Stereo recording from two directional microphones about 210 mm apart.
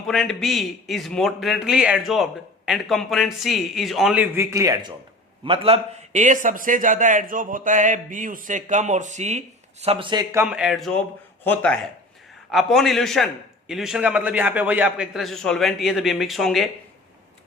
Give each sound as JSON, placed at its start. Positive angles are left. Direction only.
{"t": 0.0, "sound": "a man's voice", "side_deg": 0}
{"t": 10.4, "sound": "a man's voice", "side_deg": -5}